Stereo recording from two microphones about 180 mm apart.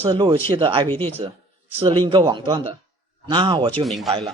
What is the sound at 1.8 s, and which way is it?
Speech, 25° right (ahead or behind).